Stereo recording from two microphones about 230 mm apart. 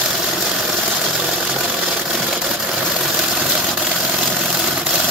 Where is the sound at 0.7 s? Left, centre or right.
Centre.